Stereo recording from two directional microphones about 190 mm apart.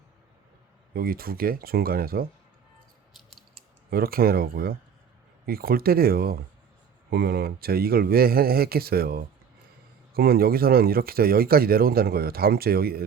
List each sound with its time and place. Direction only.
0.9 s speech: 50° right (ahead or behind)
3.8 s speech: 50° right (ahead or behind)